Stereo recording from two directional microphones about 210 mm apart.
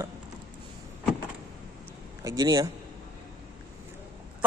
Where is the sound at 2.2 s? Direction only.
20° right (ahead or behind).